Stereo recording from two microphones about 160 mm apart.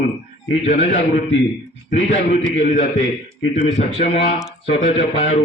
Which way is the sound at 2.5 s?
45° left (ahead or behind).